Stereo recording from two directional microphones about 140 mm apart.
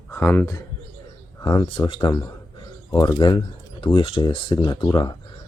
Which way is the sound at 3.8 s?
40° left (ahead or behind).